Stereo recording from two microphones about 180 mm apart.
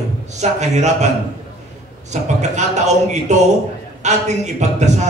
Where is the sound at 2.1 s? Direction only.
40° right (ahead or behind).